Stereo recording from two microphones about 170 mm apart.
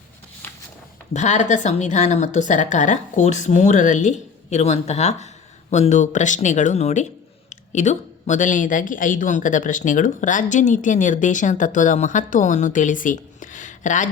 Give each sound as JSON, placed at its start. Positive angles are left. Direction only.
{"t": 1.1, "sound": "speech", "side_deg": 45}